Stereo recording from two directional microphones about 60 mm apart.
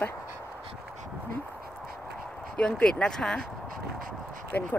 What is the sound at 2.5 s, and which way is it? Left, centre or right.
Speech, centre.